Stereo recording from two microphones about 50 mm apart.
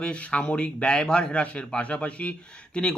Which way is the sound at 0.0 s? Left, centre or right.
Left.